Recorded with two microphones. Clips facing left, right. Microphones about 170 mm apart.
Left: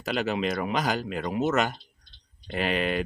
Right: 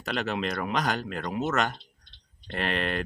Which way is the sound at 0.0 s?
Centre (ahead or behind).